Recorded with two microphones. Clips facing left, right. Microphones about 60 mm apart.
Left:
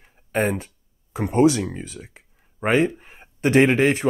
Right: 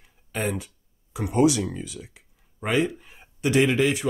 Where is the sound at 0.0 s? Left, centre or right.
Left.